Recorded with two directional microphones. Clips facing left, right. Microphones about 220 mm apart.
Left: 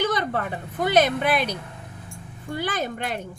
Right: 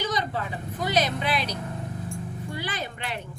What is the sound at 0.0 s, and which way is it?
Speech, 55° left (ahead or behind).